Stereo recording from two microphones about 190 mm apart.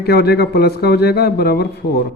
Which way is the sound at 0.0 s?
55° left (ahead or behind).